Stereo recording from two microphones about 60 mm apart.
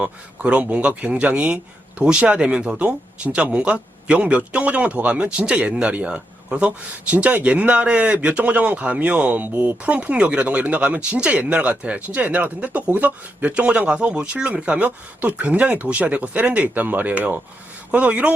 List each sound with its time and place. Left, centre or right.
0.0 s speech: right